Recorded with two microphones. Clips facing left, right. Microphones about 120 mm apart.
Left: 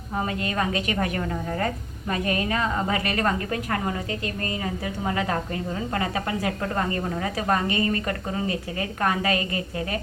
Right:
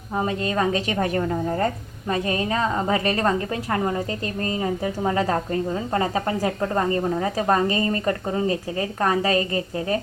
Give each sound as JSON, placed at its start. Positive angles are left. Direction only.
{"t": 0.2, "sound": "a woman's voice", "side_deg": -25}